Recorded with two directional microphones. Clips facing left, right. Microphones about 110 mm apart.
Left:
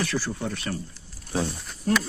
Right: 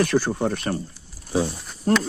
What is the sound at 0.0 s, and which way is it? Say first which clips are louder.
Speech: right 8 dB; 55° right (ahead or behind).